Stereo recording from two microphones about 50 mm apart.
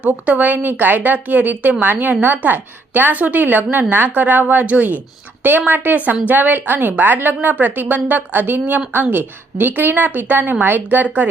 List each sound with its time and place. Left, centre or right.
0.0 s a woman's voice: right